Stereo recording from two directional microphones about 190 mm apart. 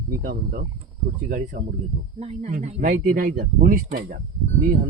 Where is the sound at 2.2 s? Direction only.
35° right (ahead or behind).